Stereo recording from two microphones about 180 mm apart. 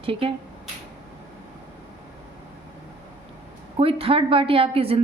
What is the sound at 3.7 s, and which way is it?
A woman's voice, 30° right (ahead or behind).